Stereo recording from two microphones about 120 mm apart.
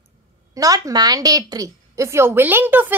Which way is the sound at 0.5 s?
30° right (ahead or behind).